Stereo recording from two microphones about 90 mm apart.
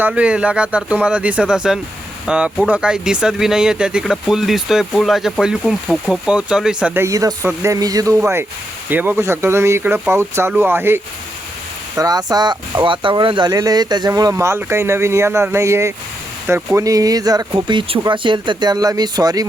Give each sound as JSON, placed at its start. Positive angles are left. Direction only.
{"t": 0.1, "sound": "speech", "side_deg": -10}
{"t": 6.9, "sound": "speech", "side_deg": -30}
{"t": 7.8, "sound": "speech", "side_deg": -45}
{"t": 11.9, "sound": "speech", "side_deg": -45}
{"t": 12.8, "sound": "speech", "side_deg": -65}
{"t": 13.5, "sound": "speech", "side_deg": -45}
{"t": 17.7, "sound": "speech", "side_deg": -75}
{"t": 18.1, "sound": "speech", "side_deg": -65}